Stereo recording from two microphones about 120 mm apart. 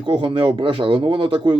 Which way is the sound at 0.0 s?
45° right (ahead or behind).